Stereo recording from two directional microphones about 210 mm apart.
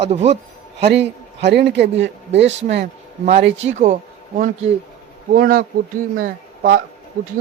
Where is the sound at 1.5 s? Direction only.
55° right (ahead or behind).